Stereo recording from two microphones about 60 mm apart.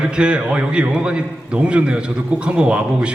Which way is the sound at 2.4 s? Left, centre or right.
Centre.